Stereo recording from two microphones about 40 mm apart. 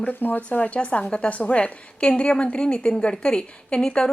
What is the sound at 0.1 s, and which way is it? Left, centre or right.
Speech, left.